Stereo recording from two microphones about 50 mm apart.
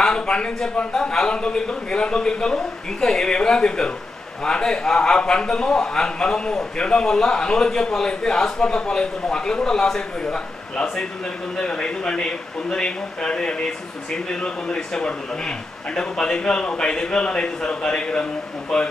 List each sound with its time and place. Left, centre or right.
0.0 s speech: centre